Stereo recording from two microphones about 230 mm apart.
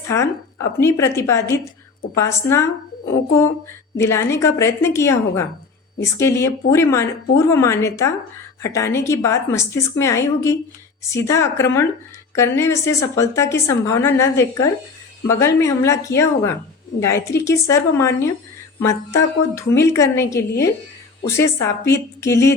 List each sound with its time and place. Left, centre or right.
0.1 s a woman's voice: centre
3.9 s a woman's voice: centre